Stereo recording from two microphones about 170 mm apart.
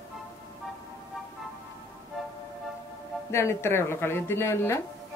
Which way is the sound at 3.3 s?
15° left (ahead or behind).